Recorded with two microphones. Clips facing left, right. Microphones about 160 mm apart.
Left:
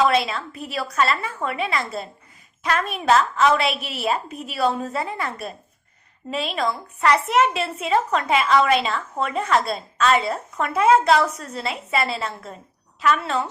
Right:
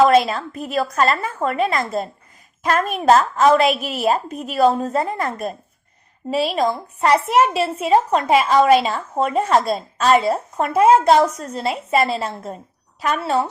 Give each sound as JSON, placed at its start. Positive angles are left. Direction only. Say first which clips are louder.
{"t": 0.0, "sound": "a woman's voice", "louder": "right 6 dB", "side_deg": -45}